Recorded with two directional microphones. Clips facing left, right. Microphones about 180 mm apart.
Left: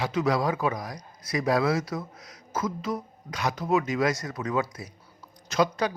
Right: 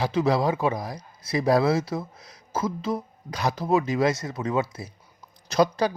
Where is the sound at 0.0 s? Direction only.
30° right (ahead or behind).